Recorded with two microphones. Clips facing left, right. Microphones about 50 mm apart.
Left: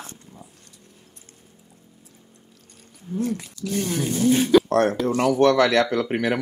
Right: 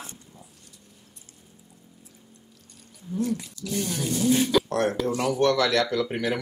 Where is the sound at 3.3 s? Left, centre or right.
Left.